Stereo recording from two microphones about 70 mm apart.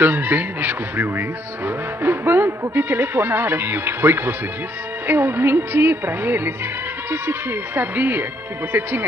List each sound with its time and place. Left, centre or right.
0.0 s music: right
2.7 s speech: right
5.0 s music: right